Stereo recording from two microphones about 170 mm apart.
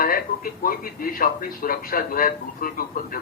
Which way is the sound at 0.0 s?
55° left (ahead or behind).